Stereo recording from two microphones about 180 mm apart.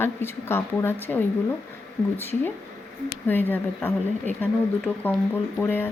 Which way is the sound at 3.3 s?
10° left (ahead or behind).